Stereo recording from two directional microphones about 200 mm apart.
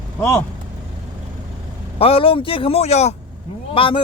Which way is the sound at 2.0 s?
25° left (ahead or behind).